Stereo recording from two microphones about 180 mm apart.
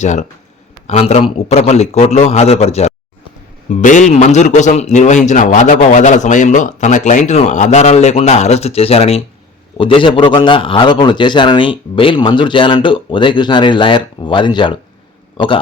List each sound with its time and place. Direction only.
0.0 s a man's voice: 40° left (ahead or behind)